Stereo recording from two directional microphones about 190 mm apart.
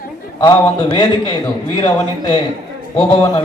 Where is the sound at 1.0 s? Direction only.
25° left (ahead or behind).